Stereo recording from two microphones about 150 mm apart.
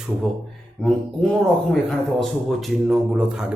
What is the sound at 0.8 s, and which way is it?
Speech, 5° left (ahead or behind).